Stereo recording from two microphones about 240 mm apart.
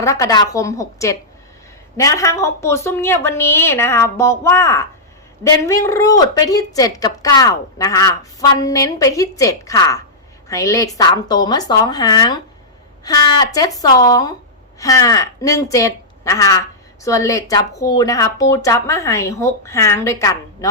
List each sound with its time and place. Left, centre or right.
0.0 s speech: centre